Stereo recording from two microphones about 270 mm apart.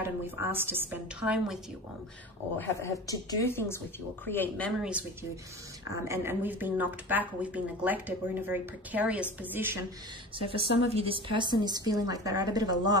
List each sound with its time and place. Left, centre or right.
0.0 s speech: centre
2.6 s a woman's voice: centre
6.0 s speech: centre
10.9 s speech: right